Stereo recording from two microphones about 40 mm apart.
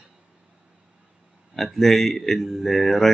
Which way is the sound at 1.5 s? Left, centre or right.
Centre.